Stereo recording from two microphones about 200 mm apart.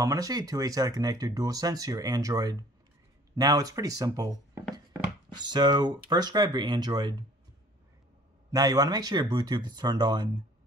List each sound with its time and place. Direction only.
0.0 s speech: 15° right (ahead or behind)
8.5 s speech: 20° right (ahead or behind)